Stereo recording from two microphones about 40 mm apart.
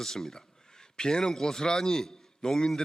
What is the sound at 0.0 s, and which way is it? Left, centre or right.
A man's voice, centre.